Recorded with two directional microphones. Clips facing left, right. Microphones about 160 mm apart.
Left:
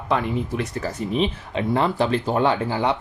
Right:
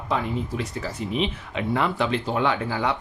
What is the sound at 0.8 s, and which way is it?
Speech, 40° left (ahead or behind).